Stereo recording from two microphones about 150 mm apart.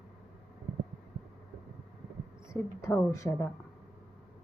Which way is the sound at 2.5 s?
20° left (ahead or behind).